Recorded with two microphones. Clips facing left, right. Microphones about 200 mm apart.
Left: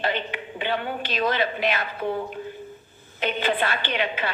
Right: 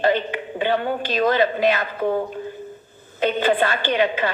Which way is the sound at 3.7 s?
45° right (ahead or behind).